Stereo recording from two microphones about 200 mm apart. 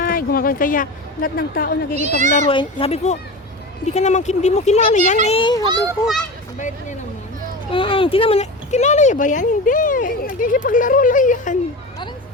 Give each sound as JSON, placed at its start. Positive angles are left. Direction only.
{"t": 0.0, "sound": "speech", "side_deg": 45}
{"t": 2.0, "sound": "a child's voice", "side_deg": -35}
{"t": 2.5, "sound": "speech", "side_deg": 25}
{"t": 5.6, "sound": "a child's voice", "side_deg": -15}
{"t": 6.6, "sound": "speech", "side_deg": 40}
{"t": 7.7, "sound": "speech", "side_deg": 25}